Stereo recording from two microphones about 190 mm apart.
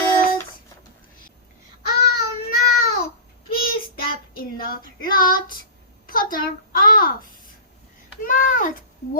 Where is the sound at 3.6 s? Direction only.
50° left (ahead or behind).